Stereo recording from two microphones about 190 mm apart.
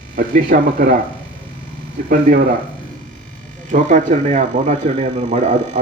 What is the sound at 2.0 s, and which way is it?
Speech, 50° right (ahead or behind).